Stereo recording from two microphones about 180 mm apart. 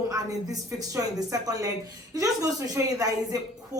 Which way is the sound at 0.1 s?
20° right (ahead or behind).